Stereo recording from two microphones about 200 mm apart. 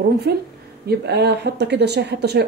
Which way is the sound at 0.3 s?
55° right (ahead or behind).